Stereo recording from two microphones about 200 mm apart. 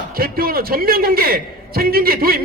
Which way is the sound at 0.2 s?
45° right (ahead or behind).